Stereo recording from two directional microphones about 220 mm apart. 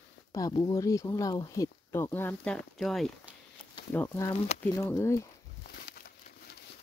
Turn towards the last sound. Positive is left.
turn(degrees=45)  # may be behind; listen again after turning